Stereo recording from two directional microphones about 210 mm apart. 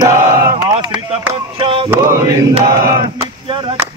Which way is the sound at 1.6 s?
25° right (ahead or behind).